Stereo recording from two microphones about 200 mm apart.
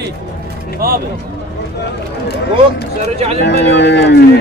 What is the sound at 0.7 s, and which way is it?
Speech, 50° right (ahead or behind).